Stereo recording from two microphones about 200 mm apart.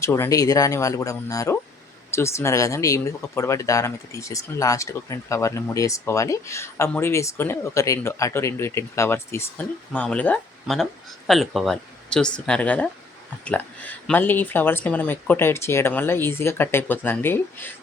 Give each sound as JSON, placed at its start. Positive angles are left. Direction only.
{"t": 0.0, "sound": "speech", "side_deg": 15}